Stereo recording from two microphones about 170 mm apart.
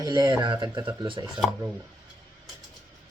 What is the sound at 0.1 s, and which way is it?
Speech, 25° right (ahead or behind).